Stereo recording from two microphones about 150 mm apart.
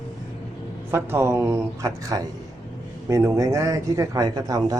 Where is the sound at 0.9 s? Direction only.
15° right (ahead or behind).